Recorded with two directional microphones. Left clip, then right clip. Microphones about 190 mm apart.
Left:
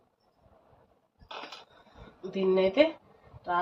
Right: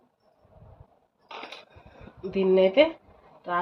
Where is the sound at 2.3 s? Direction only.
35° right (ahead or behind).